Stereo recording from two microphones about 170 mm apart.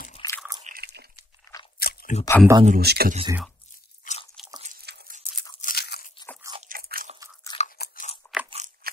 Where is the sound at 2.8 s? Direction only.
65° right (ahead or behind).